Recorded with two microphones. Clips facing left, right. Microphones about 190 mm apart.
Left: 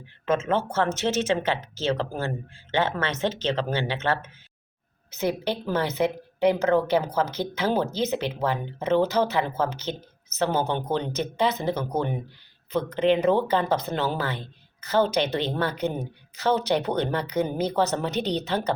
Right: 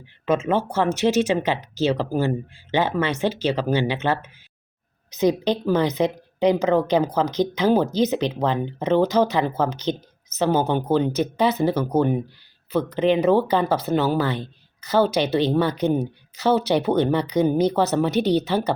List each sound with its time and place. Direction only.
0.3 s speech: 15° right (ahead or behind)